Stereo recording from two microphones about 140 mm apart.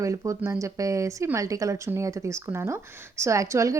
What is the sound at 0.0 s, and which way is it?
Speech, 20° right (ahead or behind).